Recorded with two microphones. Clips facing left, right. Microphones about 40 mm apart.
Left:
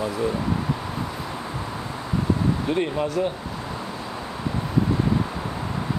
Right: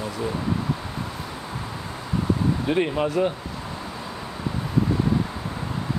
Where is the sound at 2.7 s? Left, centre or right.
Centre.